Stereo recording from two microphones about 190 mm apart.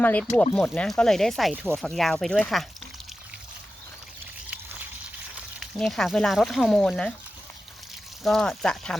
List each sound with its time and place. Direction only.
0.0 s speech: 10° left (ahead or behind)
5.5 s speech: centre (ahead or behind)
8.2 s speech: centre (ahead or behind)